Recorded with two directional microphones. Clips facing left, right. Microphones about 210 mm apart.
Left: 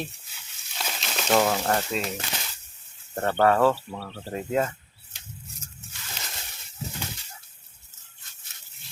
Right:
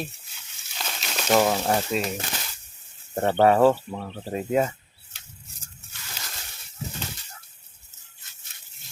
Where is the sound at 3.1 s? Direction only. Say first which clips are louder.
Right 3 dB; 15° right (ahead or behind).